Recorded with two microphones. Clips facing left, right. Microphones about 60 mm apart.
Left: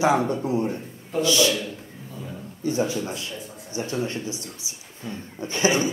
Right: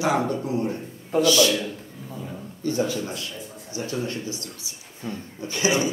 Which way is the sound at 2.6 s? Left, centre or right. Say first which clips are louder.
Even; centre.